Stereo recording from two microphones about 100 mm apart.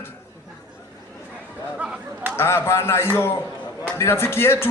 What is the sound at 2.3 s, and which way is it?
Speech, 25° left (ahead or behind).